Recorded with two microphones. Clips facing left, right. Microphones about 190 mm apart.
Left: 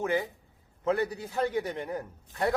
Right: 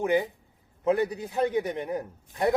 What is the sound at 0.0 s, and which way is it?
A man's voice, 15° right (ahead or behind).